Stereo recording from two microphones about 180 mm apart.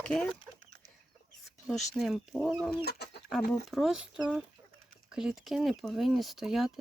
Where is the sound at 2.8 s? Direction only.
65° left (ahead or behind).